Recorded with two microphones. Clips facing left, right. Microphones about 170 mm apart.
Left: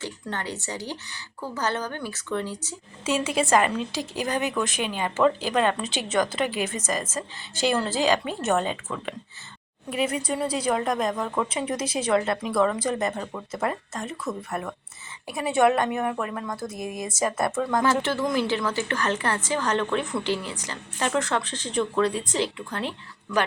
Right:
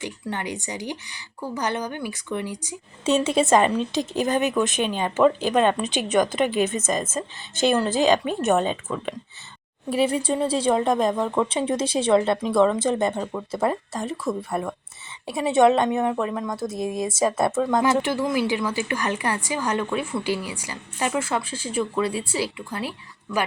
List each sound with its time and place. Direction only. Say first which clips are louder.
0.0 s a woman's voice: right 3 dB; 15° right (ahead or behind)
9.9 s speech: right 4 dB; 30° right (ahead or behind)
16.7 s speech: right 6 dB; 30° right (ahead or behind)
17.7 s a woman's voice: even; 15° right (ahead or behind)